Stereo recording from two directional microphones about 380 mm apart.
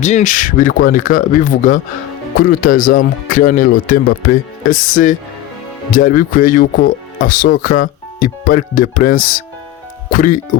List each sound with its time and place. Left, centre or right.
0.0 s speech: centre